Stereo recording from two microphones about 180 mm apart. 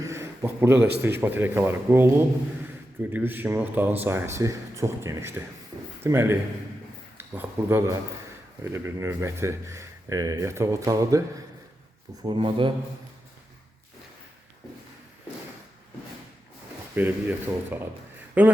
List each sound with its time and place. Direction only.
0.0 s a sound: 15° right (ahead or behind)
1.2 s a man's voice: 10° right (ahead or behind)
12.2 s speech: 25° right (ahead or behind)
16.9 s speech: 10° right (ahead or behind)